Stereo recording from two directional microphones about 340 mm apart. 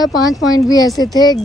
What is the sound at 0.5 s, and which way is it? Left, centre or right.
Speech, centre.